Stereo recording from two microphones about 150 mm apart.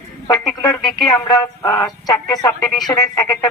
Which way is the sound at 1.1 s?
25° left (ahead or behind).